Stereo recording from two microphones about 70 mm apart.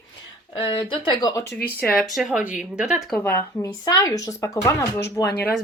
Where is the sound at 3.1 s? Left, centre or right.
Left.